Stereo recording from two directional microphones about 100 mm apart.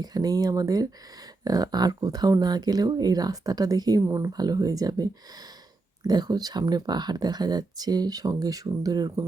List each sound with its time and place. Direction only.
0.0 s speech: 40° right (ahead or behind)